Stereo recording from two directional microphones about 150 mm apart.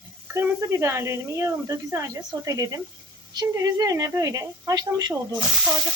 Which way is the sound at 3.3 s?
25° right (ahead or behind).